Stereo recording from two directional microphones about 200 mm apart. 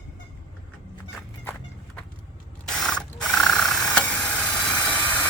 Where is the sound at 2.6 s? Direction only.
5° left (ahead or behind).